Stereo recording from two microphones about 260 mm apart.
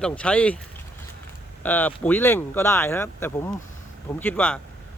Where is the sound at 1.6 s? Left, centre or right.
Centre.